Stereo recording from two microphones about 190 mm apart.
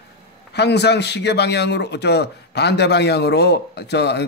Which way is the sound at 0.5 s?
60° left (ahead or behind).